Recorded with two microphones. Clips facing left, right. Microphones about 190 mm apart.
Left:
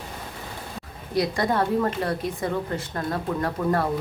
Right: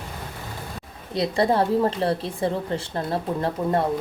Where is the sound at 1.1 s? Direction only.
25° right (ahead or behind).